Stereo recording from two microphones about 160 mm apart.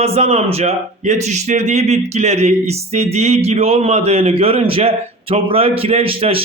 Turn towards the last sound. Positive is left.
turn(degrees=-35)  # may be behind; listen again after turning